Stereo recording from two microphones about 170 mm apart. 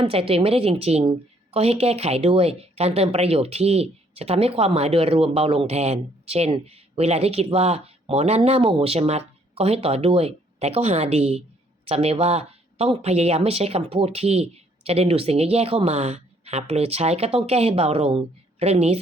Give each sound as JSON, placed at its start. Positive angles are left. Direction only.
{"t": 0.0, "sound": "a woman's voice", "side_deg": -35}